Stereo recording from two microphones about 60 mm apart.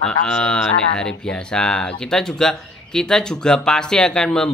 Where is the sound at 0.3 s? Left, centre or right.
Centre.